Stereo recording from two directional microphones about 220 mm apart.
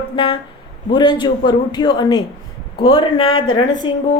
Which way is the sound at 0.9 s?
20° left (ahead or behind).